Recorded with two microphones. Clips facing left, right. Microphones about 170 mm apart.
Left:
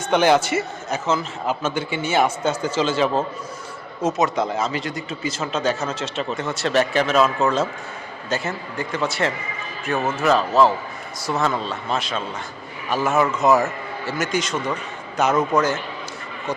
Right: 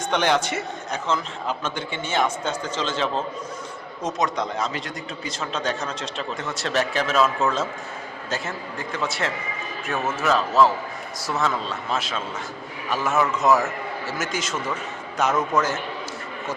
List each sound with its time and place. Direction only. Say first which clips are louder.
0.1 s a man's voice: left 6 dB; 5° left (ahead or behind)